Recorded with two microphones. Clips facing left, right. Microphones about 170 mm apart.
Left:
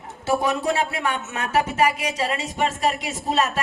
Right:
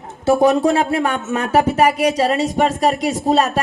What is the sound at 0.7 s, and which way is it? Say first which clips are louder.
Speech: right 6 dB; 50° right (ahead or behind).